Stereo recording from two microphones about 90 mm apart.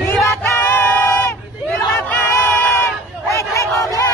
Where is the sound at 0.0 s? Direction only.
30° left (ahead or behind).